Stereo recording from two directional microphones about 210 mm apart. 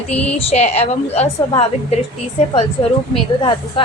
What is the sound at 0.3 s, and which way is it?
A woman's voice, 30° left (ahead or behind).